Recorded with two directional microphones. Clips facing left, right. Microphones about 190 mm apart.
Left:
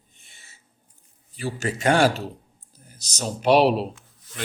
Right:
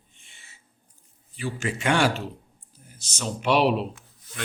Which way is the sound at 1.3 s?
40° left (ahead or behind).